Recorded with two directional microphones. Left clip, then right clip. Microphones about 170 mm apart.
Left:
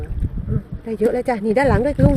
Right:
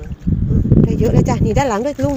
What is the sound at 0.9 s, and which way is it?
Speech, 10° left (ahead or behind).